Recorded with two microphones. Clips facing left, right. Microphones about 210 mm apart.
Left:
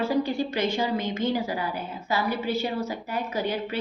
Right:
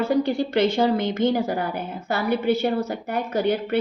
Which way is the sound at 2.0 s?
65° right (ahead or behind).